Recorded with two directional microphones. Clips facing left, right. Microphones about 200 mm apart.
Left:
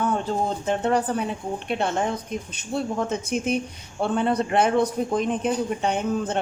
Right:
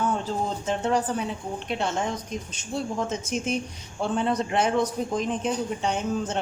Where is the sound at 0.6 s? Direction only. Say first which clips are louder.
Left 1 dB; 55° left (ahead or behind).